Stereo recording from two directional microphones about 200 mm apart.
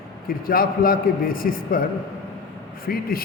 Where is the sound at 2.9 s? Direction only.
50° left (ahead or behind).